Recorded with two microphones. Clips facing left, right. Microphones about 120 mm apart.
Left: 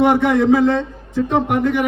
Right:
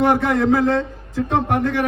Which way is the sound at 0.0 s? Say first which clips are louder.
Left 3 dB; 20° left (ahead or behind).